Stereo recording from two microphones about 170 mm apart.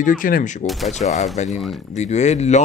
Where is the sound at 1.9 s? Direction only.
45° left (ahead or behind).